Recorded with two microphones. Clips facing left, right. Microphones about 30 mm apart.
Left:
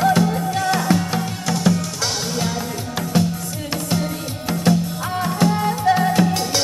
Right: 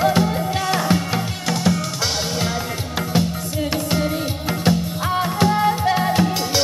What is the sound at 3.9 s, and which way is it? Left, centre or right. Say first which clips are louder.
Music: right 2 dB; centre.